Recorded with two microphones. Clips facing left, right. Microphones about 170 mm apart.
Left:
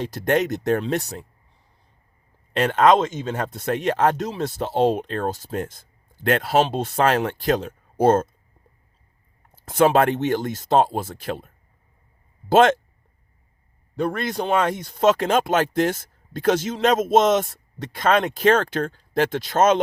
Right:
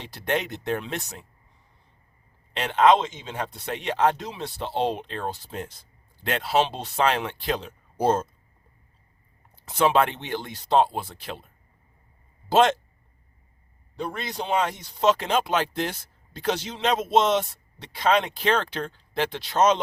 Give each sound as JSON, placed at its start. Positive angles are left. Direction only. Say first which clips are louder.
{"t": 0.0, "sound": "speech", "louder": "left 7 dB", "side_deg": 45}
{"t": 2.5, "sound": "speech", "louder": "left 3 dB", "side_deg": 45}
{"t": 9.6, "sound": "speech", "louder": "left 4 dB", "side_deg": 45}
{"t": 12.5, "sound": "speech", "louder": "left 4 dB", "side_deg": 50}
{"t": 13.9, "sound": "speech", "louder": "left 7 dB", "side_deg": 55}